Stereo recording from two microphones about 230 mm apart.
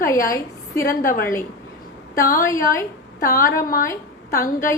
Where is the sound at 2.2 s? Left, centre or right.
Left.